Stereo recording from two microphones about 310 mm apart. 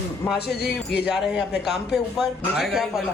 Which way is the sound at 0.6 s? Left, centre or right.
Left.